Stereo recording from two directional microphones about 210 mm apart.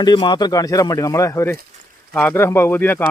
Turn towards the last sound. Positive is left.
turn(degrees=10)  # may be behind; listen again after turning